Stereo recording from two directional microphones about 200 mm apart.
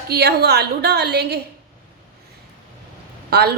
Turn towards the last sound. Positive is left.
turn(degrees=-55)  # may be behind; listen again after turning